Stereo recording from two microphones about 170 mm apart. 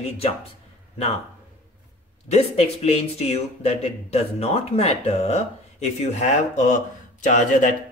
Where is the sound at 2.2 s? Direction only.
40° left (ahead or behind).